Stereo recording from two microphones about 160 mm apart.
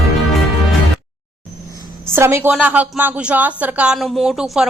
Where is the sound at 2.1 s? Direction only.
15° right (ahead or behind).